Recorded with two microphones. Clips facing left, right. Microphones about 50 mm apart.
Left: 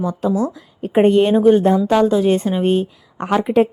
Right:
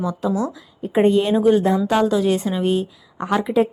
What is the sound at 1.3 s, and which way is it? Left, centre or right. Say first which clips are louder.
Speech: left 3 dB; left.